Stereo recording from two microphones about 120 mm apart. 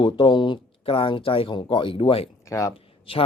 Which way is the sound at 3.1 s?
50° left (ahead or behind).